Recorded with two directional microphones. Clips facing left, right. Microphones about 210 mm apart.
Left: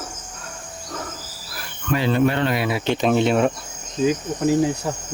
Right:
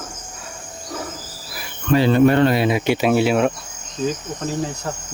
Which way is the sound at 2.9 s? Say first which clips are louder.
Left 1 dB; 10° right (ahead or behind).